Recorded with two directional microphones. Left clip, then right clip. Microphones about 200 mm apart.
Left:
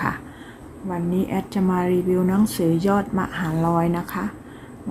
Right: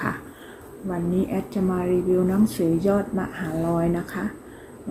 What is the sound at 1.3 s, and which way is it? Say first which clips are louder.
Speech: left 2 dB; 30° left (ahead or behind).